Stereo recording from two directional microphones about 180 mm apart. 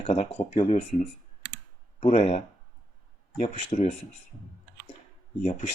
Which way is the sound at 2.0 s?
35° left (ahead or behind).